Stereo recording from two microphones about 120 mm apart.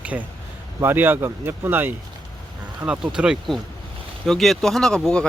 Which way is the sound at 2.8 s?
5° right (ahead or behind).